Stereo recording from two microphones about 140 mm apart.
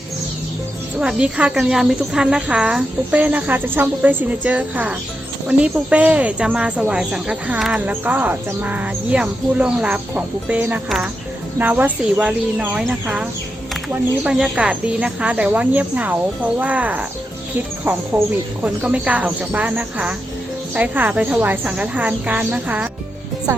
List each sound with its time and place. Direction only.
0.9 s speech: 10° right (ahead or behind)